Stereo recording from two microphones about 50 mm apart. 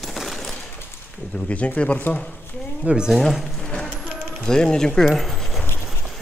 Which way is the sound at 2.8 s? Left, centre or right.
Centre.